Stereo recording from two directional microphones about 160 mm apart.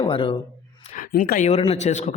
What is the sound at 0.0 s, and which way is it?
Speech, 35° left (ahead or behind).